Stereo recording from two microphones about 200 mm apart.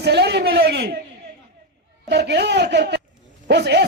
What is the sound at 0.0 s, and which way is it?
Speech, 55° right (ahead or behind).